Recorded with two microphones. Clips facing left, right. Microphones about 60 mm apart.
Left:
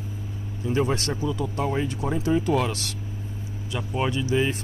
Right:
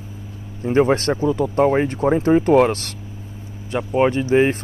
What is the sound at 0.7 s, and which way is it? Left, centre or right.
Speech, right.